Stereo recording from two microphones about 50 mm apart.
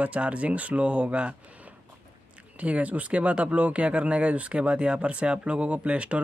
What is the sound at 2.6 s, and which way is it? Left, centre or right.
Speech, right.